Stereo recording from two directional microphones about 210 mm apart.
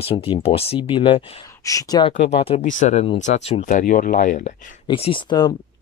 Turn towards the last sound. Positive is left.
turn(degrees=20)  # may be behind; listen again after turning